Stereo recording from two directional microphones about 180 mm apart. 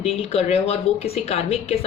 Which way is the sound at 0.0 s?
35° left (ahead or behind).